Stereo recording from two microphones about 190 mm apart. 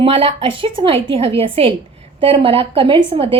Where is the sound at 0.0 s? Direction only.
30° right (ahead or behind).